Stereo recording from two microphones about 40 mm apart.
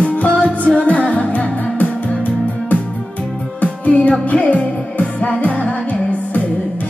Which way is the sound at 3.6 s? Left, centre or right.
Left.